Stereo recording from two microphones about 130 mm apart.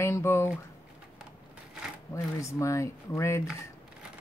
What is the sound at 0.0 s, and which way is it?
Speech, 20° left (ahead or behind).